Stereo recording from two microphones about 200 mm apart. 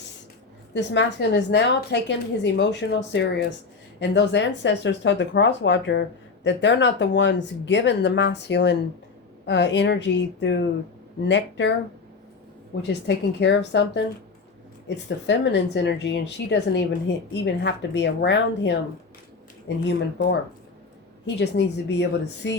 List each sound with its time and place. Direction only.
0.7 s speech: 60° left (ahead or behind)
12.9 s speech: 60° left (ahead or behind)
21.2 s speech: 60° left (ahead or behind)